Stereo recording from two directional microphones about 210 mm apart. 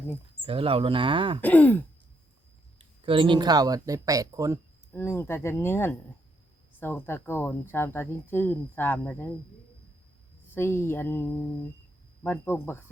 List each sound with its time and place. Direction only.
0.4 s speech: 25° right (ahead or behind)
1.4 s speech: 5° left (ahead or behind)
3.0 s speech: 25° right (ahead or behind)
4.9 s speech: 10° left (ahead or behind)
10.5 s speech: 10° left (ahead or behind)